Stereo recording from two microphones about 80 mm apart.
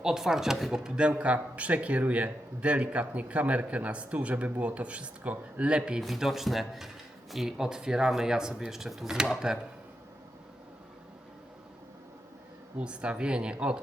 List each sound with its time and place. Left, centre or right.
0.0 s speech: centre
6.0 s speech: centre
12.8 s speech: centre